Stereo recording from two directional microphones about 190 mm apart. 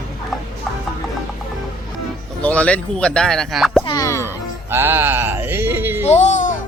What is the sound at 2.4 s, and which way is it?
Speech, 5° left (ahead or behind).